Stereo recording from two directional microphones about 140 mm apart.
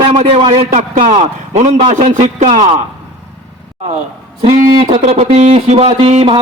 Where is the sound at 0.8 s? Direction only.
65° right (ahead or behind).